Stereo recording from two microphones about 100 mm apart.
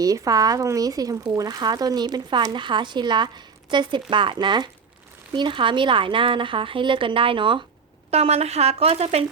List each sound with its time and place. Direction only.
0.0 s a woman's voice: 35° right (ahead or behind); by 7.6 s 55° right (ahead or behind)
8.1 s a woman's voice: 90° right